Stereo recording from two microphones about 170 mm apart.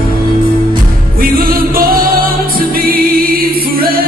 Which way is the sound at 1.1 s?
60° right (ahead or behind).